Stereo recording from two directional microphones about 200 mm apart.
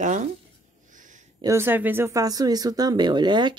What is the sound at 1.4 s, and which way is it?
Speech, 15° right (ahead or behind).